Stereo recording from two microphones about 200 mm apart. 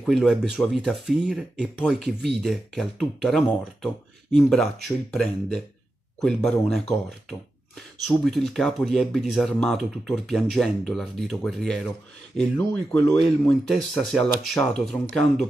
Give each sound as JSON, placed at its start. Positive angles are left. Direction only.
{"t": 0.0, "sound": "speech", "side_deg": 0}